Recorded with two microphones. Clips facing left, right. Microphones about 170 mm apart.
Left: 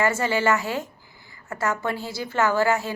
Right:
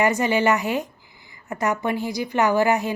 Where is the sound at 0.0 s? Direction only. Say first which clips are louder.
Right 3 dB; 15° right (ahead or behind).